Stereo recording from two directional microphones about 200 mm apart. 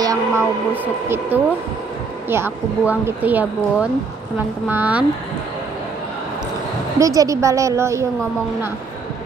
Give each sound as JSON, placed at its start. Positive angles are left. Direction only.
{"t": 0.0, "sound": "a sound", "side_deg": -15}
{"t": 1.0, "sound": "a woman's voice", "side_deg": -10}
{"t": 7.0, "sound": "a woman's voice", "side_deg": -15}